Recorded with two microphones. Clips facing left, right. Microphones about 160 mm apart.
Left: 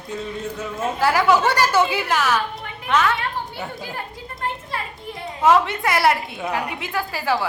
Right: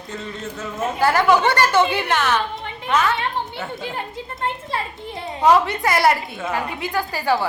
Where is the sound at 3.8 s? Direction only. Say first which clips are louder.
Right 3 dB; 25° right (ahead or behind).